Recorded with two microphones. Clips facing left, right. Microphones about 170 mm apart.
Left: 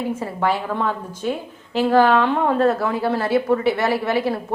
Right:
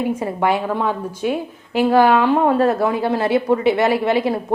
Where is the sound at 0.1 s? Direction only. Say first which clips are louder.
Right 3 dB; 15° right (ahead or behind).